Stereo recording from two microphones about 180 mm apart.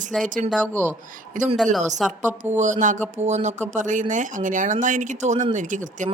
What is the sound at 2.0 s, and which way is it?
Speech, centre (ahead or behind).